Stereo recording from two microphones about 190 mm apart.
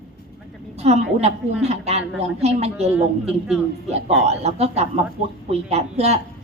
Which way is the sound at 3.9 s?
35° right (ahead or behind).